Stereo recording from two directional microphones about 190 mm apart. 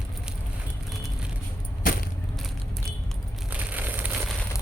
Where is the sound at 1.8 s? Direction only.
50° left (ahead or behind).